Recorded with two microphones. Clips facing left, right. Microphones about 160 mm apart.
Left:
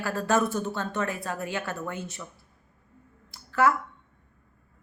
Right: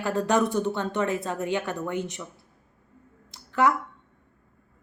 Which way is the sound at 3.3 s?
20° right (ahead or behind).